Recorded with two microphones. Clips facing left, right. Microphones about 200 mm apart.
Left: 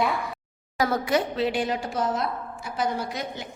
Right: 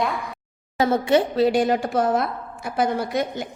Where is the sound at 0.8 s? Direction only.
25° right (ahead or behind).